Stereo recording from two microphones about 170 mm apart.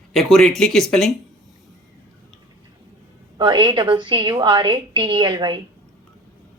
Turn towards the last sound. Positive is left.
turn(degrees=-25)  # may be behind; listen again after turning